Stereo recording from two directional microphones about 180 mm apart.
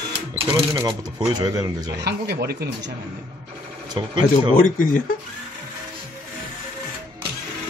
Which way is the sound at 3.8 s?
25° right (ahead or behind).